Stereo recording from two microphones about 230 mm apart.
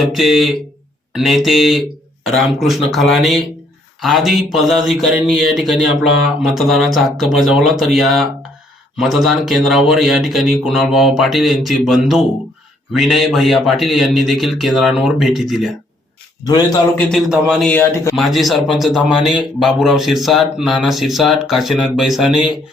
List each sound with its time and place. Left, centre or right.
0.1 s a man's voice: centre
17.1 s a man's voice: centre